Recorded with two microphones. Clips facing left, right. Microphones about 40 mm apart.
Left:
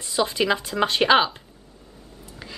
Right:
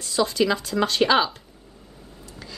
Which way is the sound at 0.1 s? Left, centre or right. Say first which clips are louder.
Even; left.